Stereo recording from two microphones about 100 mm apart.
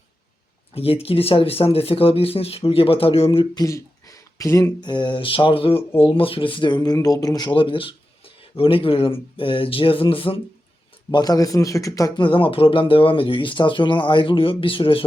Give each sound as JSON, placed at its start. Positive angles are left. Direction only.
{"t": 0.7, "sound": "speech", "side_deg": 75}
{"t": 3.5, "sound": "speech", "side_deg": 35}
{"t": 4.8, "sound": "speech", "side_deg": 50}
{"t": 11.1, "sound": "speech", "side_deg": 40}
{"t": 12.1, "sound": "speech", "side_deg": 60}